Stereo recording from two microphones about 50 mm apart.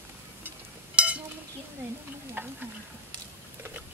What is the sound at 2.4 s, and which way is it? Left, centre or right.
Stir, right.